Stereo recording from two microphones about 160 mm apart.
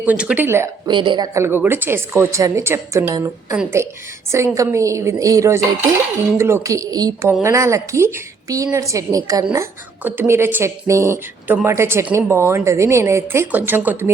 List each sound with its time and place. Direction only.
0.0 s a woman's voice: 10° right (ahead or behind)
0.9 s a woman's voice: 30° right (ahead or behind)
1.3 s a woman's voice: 15° right (ahead or behind)